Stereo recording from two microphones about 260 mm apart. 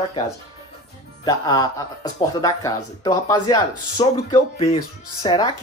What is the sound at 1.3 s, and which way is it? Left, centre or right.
Speech, centre.